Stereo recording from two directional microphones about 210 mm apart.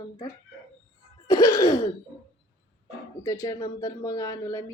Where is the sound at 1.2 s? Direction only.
15° left (ahead or behind).